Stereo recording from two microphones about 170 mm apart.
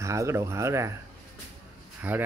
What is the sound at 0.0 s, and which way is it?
Speech, 15° right (ahead or behind).